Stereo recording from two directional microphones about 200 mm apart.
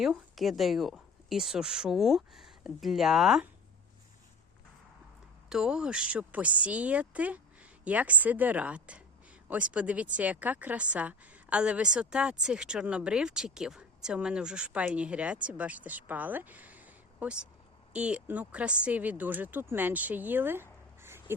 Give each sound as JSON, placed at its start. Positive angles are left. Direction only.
{"t": 0.0, "sound": "a woman's voice", "side_deg": 0}
{"t": 5.5, "sound": "a woman's voice", "side_deg": -5}